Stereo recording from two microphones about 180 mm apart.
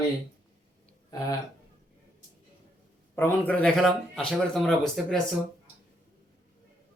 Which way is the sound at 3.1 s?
10° left (ahead or behind).